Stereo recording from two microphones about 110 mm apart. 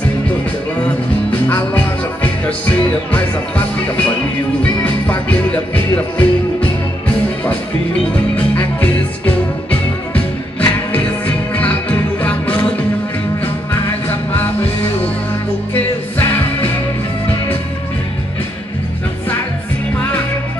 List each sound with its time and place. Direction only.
2.2 s music: 10° left (ahead or behind)
8.5 s music: 15° left (ahead or behind)
14.0 s music: 20° left (ahead or behind)
16.2 s music: 15° left (ahead or behind)